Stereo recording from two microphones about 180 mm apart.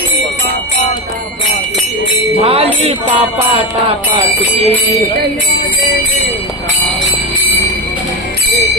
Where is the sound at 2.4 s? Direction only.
30° right (ahead or behind).